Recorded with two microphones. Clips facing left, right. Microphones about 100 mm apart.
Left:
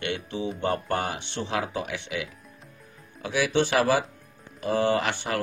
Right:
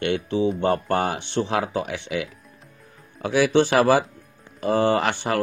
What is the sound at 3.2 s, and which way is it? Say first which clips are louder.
Speech: right 6 dB; 45° right (ahead or behind).